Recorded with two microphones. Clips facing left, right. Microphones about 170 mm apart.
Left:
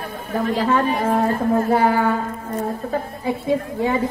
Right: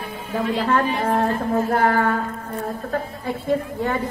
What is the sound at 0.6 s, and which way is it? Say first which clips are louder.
Speech: left 2 dB; 5° left (ahead or behind).